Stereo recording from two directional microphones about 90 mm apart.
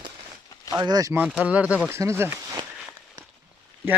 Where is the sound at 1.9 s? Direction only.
30° right (ahead or behind).